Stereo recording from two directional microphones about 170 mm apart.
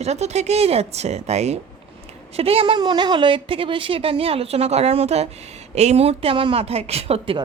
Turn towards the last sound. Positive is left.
turn(degrees=-35)  # may be behind; listen again after turning